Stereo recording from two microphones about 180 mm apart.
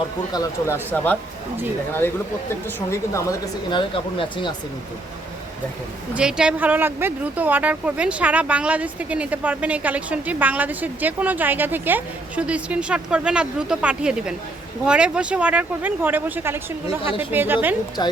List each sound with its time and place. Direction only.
0.3 s speech: 15° left (ahead or behind)
3.2 s speech: 20° left (ahead or behind)
6.1 s speech: 5° right (ahead or behind)
18.0 s speech: 25° left (ahead or behind)